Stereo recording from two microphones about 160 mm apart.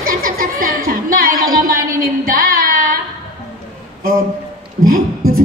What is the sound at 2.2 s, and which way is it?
Female singing, 65° right (ahead or behind).